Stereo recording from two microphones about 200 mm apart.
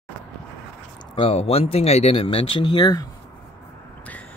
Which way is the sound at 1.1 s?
30° left (ahead or behind).